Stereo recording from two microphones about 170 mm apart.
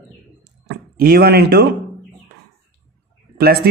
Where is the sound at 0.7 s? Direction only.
65° right (ahead or behind).